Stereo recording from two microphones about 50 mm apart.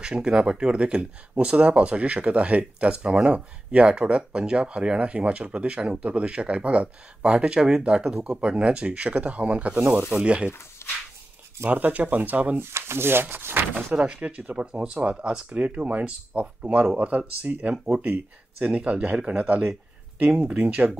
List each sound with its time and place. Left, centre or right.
0.0 s speech: centre
10.8 s a sound: left
11.7 s speech: right
12.5 s speech: right
13.9 s speech: right